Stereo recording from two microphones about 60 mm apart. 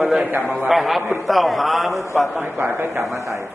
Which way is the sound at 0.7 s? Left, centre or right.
Centre.